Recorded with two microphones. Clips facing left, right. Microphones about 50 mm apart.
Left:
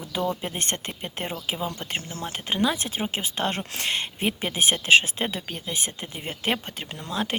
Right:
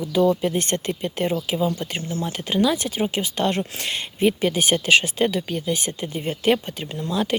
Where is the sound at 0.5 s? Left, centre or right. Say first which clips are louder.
Right 6 dB; left.